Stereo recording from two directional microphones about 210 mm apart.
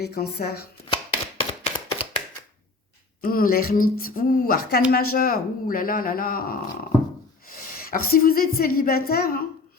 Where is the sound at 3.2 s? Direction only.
45° left (ahead or behind).